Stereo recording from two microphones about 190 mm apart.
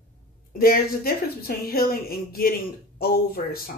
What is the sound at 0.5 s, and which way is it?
Speech, 50° left (ahead or behind).